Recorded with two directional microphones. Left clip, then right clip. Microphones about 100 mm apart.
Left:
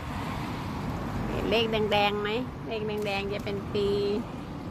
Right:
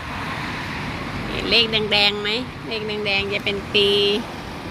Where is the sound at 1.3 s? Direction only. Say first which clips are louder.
Right 8 dB; 40° right (ahead or behind).